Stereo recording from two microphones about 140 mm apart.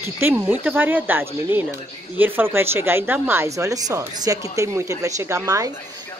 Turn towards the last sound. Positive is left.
turn(degrees=-20)  # may be behind; listen again after turning